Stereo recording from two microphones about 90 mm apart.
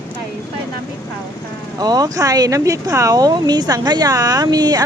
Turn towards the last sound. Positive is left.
turn(degrees=-50)  # may be behind; listen again after turning